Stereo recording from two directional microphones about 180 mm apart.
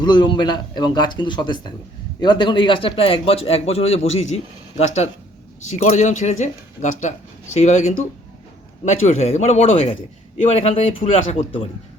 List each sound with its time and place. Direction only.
0.0 s a man's voice: 25° left (ahead or behind)
5.8 s a man's voice: 40° left (ahead or behind)